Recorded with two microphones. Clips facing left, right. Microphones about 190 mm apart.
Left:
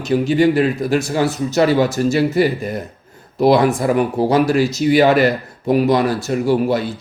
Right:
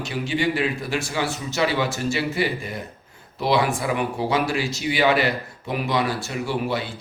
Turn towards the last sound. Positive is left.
turn(degrees=45)  # may be behind; listen again after turning